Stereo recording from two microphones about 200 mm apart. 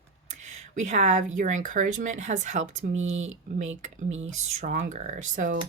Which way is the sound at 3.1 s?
75° right (ahead or behind).